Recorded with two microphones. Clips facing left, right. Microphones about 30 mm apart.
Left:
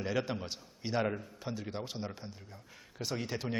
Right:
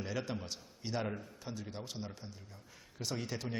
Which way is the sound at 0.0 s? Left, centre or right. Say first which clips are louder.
Left 5 dB; left.